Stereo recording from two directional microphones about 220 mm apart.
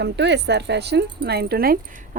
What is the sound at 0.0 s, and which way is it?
Speech, 50° right (ahead or behind).